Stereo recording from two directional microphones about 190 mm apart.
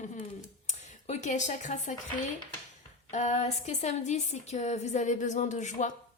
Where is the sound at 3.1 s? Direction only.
35° left (ahead or behind).